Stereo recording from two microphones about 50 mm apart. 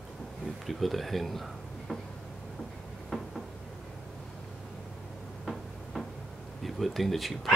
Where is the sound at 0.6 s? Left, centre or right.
Centre.